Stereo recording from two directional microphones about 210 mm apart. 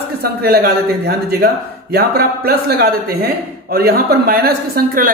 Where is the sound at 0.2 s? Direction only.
50° right (ahead or behind).